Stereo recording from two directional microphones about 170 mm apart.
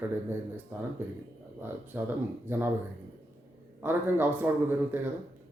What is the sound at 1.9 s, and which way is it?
Speech, 10° right (ahead or behind).